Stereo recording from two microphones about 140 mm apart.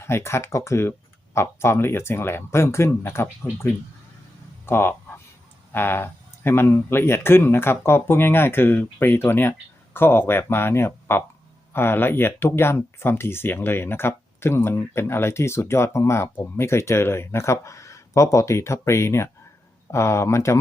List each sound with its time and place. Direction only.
0.0 s speech: 20° left (ahead or behind)
4.6 s speech: 15° left (ahead or behind)